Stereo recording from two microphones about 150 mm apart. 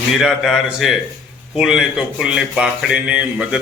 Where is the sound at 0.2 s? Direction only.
Centre (ahead or behind).